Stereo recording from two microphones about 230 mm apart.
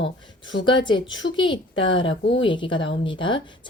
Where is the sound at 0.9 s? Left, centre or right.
Centre.